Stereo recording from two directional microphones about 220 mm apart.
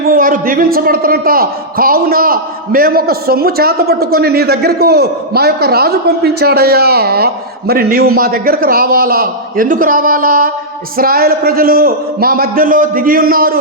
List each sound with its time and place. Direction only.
0.0 s a man's voice: 40° right (ahead or behind)